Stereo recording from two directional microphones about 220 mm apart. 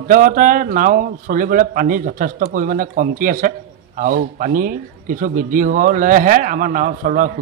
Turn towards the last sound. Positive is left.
turn(degrees=-40)  # may be behind; listen again after turning